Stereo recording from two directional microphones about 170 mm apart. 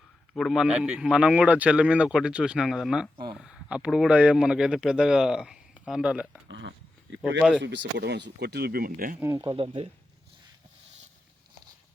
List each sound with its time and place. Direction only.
0.3 s speech: centre (ahead or behind)
6.5 s a sound: 90° right
7.2 s speech: 5° right (ahead or behind)
7.6 s speech: 90° right; by 9.1 s 60° right (ahead or behind)
9.2 s speech: 20° right (ahead or behind)